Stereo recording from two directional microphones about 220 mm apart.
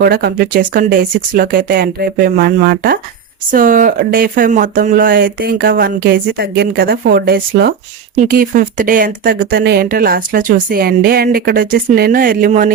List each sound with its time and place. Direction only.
0.0 s speech: 45° right (ahead or behind)